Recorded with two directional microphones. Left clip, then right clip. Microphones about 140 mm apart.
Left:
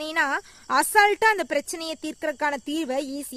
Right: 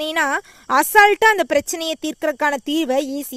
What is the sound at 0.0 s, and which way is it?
A woman's voice, 50° right (ahead or behind).